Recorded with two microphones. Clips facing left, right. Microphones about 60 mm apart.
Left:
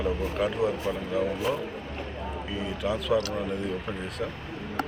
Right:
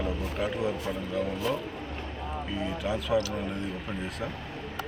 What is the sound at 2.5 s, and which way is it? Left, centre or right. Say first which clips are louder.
Speech: left 2 dB; centre.